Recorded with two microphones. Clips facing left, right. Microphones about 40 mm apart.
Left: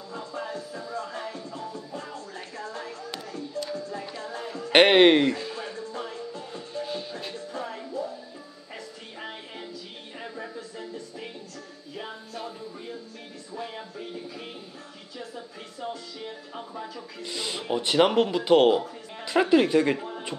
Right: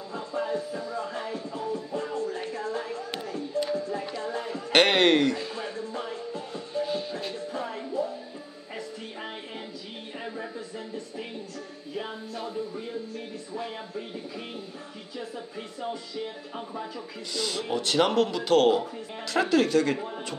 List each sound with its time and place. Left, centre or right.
0.1 s music: centre
4.7 s speech: centre
5.3 s music: centre
10.2 s a sound: centre
11.9 s music: centre
15.1 s a sound: centre
16.5 s speech: centre
17.3 s speech: centre
20.0 s a sound: centre